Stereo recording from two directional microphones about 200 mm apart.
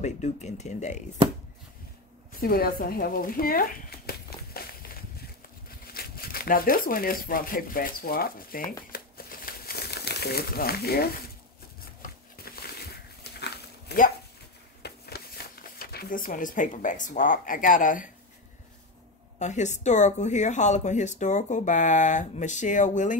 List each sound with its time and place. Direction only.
0.0 s speech: 35° left (ahead or behind)
2.4 s speech: 50° left (ahead or behind)
4.6 s a sound: 50° left (ahead or behind)
5.9 s speech: 50° left (ahead or behind)
8.9 s crumpling: 45° left (ahead or behind)
12.0 s a sound: 50° left (ahead or behind)
14.8 s speech: 50° left (ahead or behind)
19.3 s speech: 35° left (ahead or behind)